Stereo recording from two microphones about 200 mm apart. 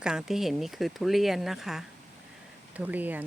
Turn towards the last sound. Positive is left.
turn(degrees=-10)  # may be behind; listen again after turning